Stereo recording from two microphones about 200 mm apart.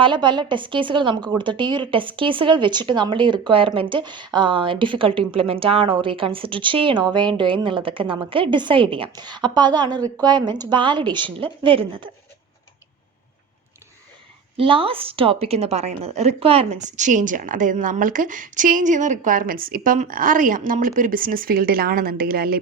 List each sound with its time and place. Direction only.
0.0 s speech: 25° right (ahead or behind)
14.5 s a woman's voice: 25° right (ahead or behind); by 22.5 s 50° right (ahead or behind)